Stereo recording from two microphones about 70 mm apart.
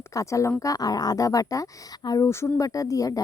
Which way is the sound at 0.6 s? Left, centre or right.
Left.